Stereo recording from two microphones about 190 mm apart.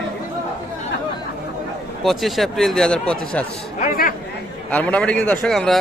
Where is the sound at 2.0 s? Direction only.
Centre (ahead or behind).